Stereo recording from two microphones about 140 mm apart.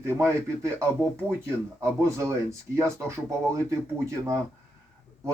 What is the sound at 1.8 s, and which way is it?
Speech, 20° right (ahead or behind).